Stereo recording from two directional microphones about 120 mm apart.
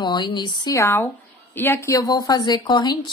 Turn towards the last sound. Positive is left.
turn(degrees=40)  # may be behind; listen again after turning